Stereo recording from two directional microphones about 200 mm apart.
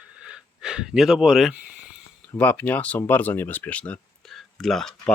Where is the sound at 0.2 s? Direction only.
5° right (ahead or behind).